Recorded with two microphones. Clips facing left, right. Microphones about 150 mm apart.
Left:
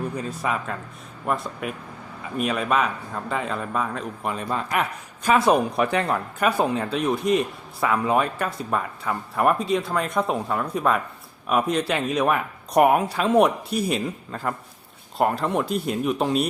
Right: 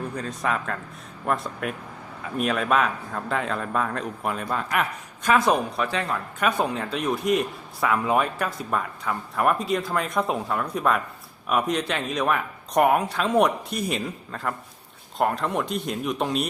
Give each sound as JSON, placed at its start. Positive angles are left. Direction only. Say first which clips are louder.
{"t": 0.2, "sound": "speech", "louder": "even", "side_deg": 5}
{"t": 5.7, "sound": "speech", "louder": "left 4 dB", "side_deg": 20}
{"t": 6.4, "sound": "speech", "louder": "left 2 dB", "side_deg": 0}